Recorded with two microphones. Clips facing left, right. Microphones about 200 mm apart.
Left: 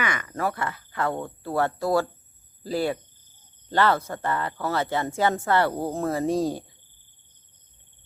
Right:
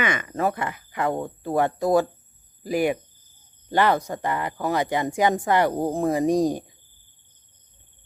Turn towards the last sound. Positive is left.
turn(degrees=-15)  # may be behind; listen again after turning